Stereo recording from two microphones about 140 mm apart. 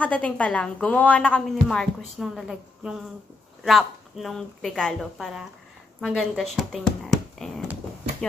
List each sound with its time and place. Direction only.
0.0 s a woman's voice: 10° left (ahead or behind)